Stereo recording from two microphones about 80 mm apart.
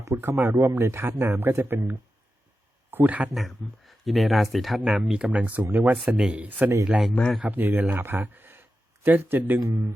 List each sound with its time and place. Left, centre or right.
0.2 s speech: right
3.3 s speech: centre
5.6 s speech: right
6.1 s speech: centre
7.4 s speech: right
9.6 s speech: right